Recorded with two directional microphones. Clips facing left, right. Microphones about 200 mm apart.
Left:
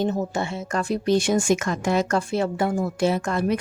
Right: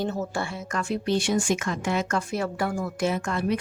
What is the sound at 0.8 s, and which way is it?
Speech, 40° left (ahead or behind).